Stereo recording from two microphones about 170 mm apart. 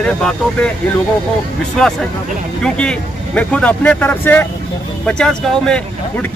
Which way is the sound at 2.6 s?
5° left (ahead or behind).